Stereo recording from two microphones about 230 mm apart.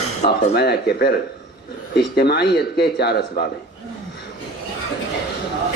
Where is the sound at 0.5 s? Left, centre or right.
Left.